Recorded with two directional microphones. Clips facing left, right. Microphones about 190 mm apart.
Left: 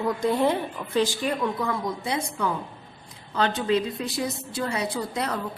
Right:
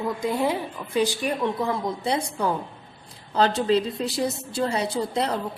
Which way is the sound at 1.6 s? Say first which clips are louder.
Right 2 dB; 30° right (ahead or behind).